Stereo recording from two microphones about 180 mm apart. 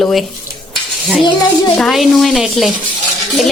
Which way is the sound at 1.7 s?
Centre (ahead or behind).